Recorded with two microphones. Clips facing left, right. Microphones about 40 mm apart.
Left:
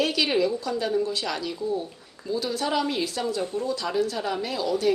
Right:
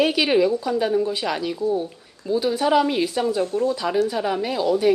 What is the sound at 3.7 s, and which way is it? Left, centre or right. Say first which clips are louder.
A woman's voice: right 4 dB; centre.